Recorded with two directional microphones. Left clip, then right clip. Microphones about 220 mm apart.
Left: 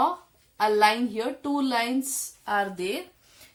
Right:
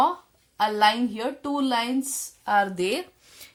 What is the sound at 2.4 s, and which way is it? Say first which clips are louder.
Speech: right 4 dB; 45° right (ahead or behind).